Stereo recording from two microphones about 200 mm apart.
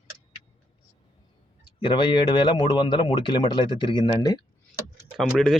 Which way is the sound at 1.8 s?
25° left (ahead or behind).